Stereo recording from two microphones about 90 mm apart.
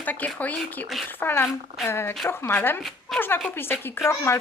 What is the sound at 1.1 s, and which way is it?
Speech, 25° left (ahead or behind).